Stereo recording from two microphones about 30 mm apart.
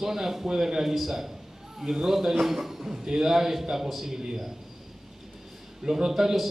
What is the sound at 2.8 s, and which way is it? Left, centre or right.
A man's voice, right.